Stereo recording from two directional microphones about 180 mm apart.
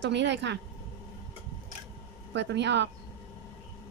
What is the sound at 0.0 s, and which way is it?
Speech, 75° right (ahead or behind).